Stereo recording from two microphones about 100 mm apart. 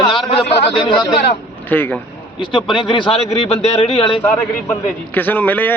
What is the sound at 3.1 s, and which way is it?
Speech, 90° left.